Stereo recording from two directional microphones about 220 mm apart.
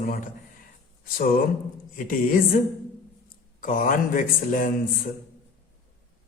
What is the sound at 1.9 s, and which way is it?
Speech, 40° left (ahead or behind).